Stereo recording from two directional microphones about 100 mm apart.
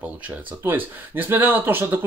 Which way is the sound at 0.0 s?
15° right (ahead or behind).